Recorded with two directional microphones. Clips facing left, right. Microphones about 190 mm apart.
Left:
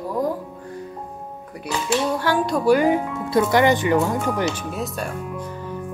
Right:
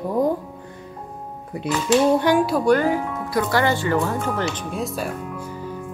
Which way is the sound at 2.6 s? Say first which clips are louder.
Left 4 dB; 10° left (ahead or behind).